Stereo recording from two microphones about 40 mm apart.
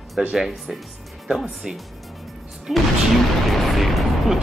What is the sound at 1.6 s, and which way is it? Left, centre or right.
Speech, centre.